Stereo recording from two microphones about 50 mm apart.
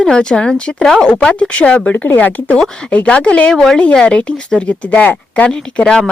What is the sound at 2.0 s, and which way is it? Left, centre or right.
Speech, left.